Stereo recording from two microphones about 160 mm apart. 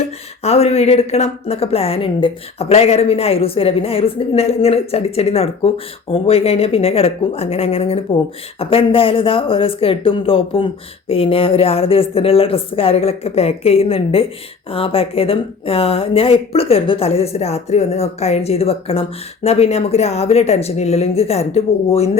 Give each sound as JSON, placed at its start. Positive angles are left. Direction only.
{"t": 0.4, "sound": "a woman's voice", "side_deg": 40}